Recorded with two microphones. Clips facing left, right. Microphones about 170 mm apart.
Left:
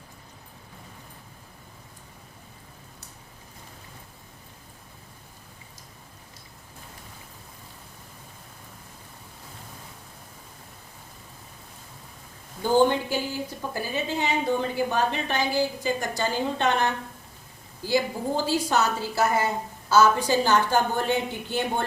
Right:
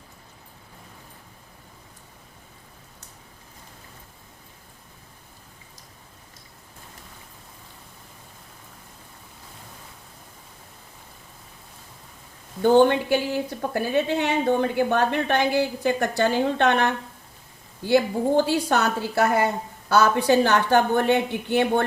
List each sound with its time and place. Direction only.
12.6 s a woman's voice: 65° right (ahead or behind)